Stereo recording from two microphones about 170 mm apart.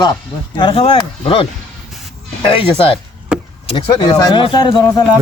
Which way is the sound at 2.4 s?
30° left (ahead or behind).